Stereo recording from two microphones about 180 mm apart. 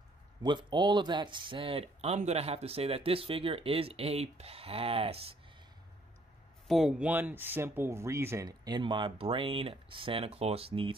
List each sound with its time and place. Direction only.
0.4 s speech: 25° right (ahead or behind)
6.7 s speech: centre (ahead or behind); by 11.0 s 30° right (ahead or behind)